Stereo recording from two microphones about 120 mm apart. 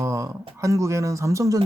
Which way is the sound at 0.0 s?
25° right (ahead or behind).